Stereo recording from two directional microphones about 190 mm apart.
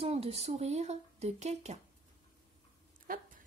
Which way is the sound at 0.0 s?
30° right (ahead or behind).